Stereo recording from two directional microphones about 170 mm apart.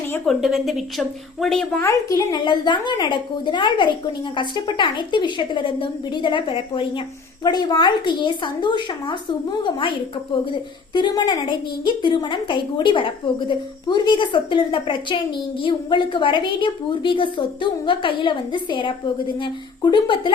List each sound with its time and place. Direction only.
0.3 s a woman's voice: centre (ahead or behind)
1.8 s a woman's voice: 20° left (ahead or behind)